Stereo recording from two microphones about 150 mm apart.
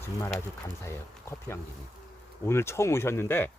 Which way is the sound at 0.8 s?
15° left (ahead or behind).